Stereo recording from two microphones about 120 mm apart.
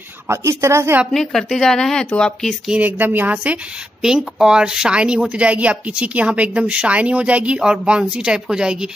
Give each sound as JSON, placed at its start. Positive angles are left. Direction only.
{"t": 0.3, "sound": "a woman's voice", "side_deg": -25}
{"t": 1.1, "sound": "speech", "side_deg": 5}
{"t": 2.7, "sound": "a woman's voice", "side_deg": -15}